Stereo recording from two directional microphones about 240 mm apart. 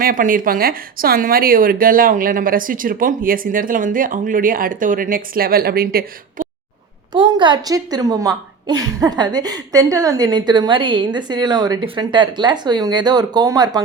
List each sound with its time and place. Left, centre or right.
0.0 s speech: right
7.1 s a woman's voice: centre